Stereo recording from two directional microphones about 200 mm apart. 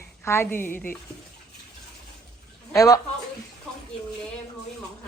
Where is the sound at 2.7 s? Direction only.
15° left (ahead or behind).